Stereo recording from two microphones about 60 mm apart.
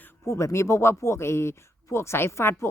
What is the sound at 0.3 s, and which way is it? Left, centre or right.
Speech, left.